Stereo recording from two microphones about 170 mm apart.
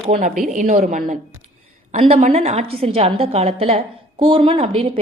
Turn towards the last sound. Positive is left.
turn(degrees=-30)  # may be behind; listen again after turning